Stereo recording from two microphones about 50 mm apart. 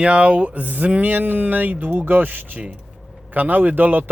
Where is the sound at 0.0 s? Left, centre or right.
Right.